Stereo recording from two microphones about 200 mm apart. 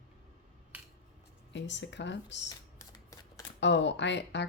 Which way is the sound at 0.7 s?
10° right (ahead or behind).